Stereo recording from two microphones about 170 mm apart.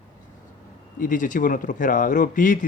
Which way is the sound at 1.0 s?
50° left (ahead or behind).